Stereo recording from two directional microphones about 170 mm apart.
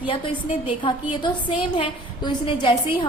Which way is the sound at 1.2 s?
30° left (ahead or behind).